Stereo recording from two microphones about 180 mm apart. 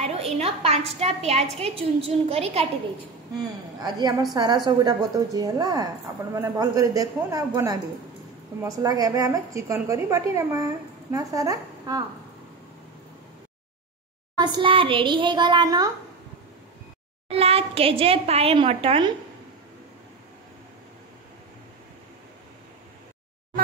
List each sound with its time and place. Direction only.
0.0 s a woman's voice: 35° right (ahead or behind)
3.3 s a woman's voice: 25° right (ahead or behind)
14.4 s a woman's voice: 25° right (ahead or behind)
17.3 s a child's voice: 35° right (ahead or behind)